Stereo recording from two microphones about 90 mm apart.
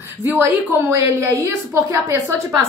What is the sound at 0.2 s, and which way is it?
A woman's voice, 25° right (ahead or behind).